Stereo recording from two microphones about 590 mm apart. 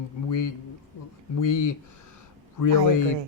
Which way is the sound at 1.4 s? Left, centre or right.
Left.